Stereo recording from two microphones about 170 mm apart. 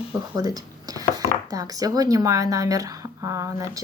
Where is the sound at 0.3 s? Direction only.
20° right (ahead or behind).